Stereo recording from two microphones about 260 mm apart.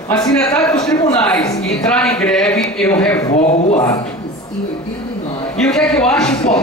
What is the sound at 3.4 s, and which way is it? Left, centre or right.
Speech, left.